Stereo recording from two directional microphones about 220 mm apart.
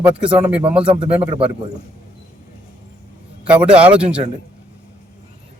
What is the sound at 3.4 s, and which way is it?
Speech, 5° right (ahead or behind).